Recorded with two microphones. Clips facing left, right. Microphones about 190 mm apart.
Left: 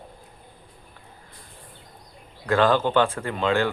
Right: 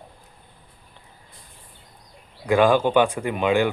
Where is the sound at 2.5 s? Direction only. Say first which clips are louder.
Right 3 dB; 15° right (ahead or behind).